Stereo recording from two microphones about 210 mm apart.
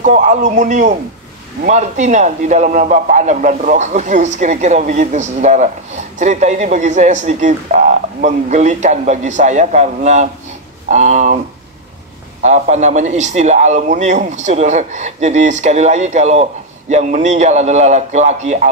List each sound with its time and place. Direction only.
0.0 s a man's voice: 35° right (ahead or behind)
12.4 s a man's voice: 35° right (ahead or behind)